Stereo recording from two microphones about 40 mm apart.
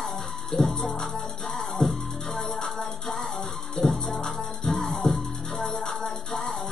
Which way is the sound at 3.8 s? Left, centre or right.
Centre.